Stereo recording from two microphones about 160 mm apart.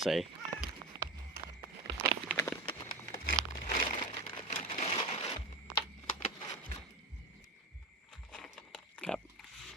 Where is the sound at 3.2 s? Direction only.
60° left (ahead or behind).